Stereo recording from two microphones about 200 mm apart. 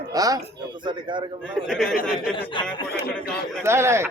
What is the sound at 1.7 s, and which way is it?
Speech, centre (ahead or behind).